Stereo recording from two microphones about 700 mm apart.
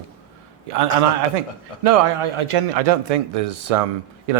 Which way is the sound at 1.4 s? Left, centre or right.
Right.